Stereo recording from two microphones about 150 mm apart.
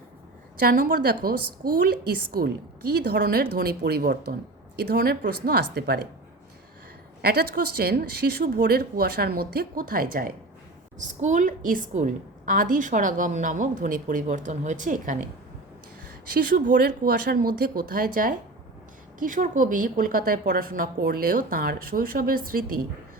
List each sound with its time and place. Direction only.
0.6 s a woman's voice: 70° right (ahead or behind); by 6.1 s 90° right
7.2 s a woman's voice: 90° right; by 10.3 s 75° right (ahead or behind)
11.0 s a woman's voice: 55° right (ahead or behind)
16.3 s a woman's voice: 65° right (ahead or behind)